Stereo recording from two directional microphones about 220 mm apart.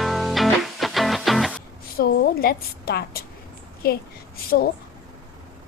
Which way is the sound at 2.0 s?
45° left (ahead or behind).